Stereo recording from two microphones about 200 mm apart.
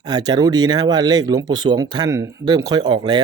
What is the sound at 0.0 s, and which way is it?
Speech, 20° right (ahead or behind).